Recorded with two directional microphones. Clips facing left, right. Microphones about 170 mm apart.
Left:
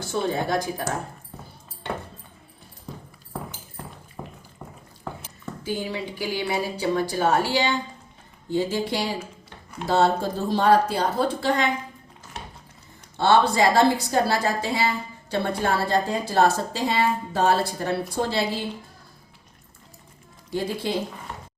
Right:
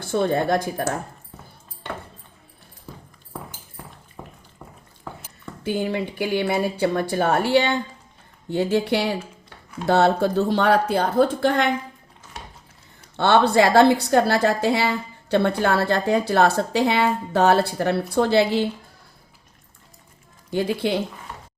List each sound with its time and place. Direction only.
0.0 s speech: 55° right (ahead or behind)
4.2 s a sound: 10° left (ahead or behind)
5.6 s speech: 60° right (ahead or behind)
13.1 s a woman's voice: 65° right (ahead or behind)
20.5 s a woman's voice: 70° right (ahead or behind)